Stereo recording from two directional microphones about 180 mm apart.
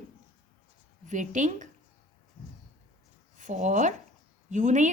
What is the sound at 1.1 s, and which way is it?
Speech, 45° right (ahead or behind).